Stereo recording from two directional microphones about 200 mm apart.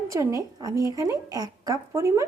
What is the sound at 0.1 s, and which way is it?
A woman's voice, 15° right (ahead or behind).